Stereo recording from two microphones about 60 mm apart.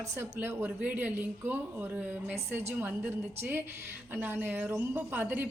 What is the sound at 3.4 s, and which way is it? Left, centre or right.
Speech, right.